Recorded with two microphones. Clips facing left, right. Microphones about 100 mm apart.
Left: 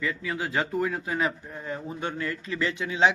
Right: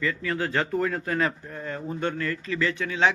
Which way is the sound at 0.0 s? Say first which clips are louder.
Right 3 dB; 10° left (ahead or behind).